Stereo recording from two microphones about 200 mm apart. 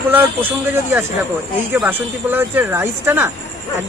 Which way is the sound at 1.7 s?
10° right (ahead or behind).